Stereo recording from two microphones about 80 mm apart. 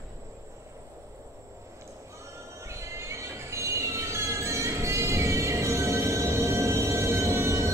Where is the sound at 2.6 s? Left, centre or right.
Right.